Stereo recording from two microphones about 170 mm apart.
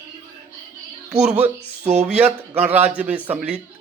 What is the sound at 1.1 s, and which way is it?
Speech, 5° right (ahead or behind).